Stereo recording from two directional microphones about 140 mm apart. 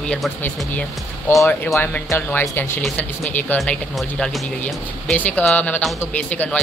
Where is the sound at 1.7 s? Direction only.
20° left (ahead or behind).